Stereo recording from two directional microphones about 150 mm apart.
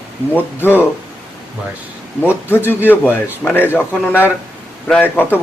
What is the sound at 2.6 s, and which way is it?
Speech, 15° left (ahead or behind).